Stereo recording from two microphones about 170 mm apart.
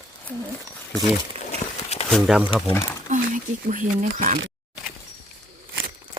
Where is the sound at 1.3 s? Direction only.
35° right (ahead or behind).